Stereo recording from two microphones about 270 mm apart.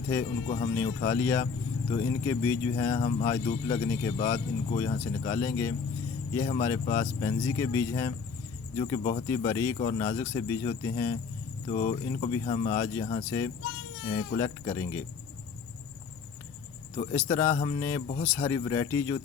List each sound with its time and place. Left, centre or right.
0.1 s speech: centre
11.7 s speech: left
14.0 s speech: left
14.3 s speech: centre
17.1 s speech: centre